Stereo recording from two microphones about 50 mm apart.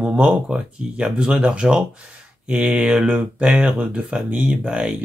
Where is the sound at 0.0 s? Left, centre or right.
Right.